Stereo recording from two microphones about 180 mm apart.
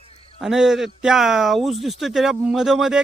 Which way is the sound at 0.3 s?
Centre (ahead or behind).